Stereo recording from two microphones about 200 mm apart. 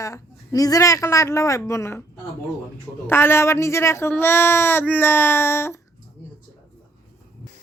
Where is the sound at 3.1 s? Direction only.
10° left (ahead or behind).